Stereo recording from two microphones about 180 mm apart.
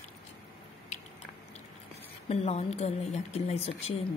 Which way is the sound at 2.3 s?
35° left (ahead or behind).